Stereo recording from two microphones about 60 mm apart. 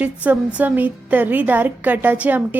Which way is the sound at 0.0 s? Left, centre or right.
Right.